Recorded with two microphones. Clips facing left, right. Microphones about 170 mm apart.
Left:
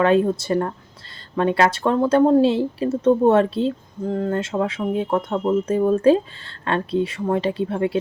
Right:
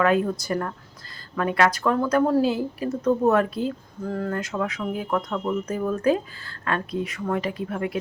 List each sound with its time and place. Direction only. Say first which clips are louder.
0.0 s speech: left 4 dB; 30° left (ahead or behind)